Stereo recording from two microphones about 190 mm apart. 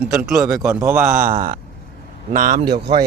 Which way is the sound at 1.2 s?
50° right (ahead or behind).